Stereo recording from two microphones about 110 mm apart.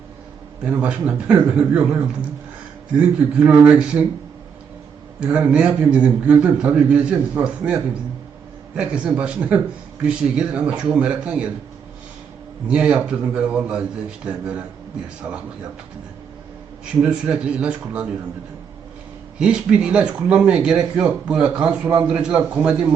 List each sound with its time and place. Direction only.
0.6 s speech: 10° right (ahead or behind)
5.2 s speech: 10° right (ahead or behind)
12.6 s speech: 10° right (ahead or behind)
16.8 s speech: 10° right (ahead or behind)
19.4 s speech: 10° right (ahead or behind)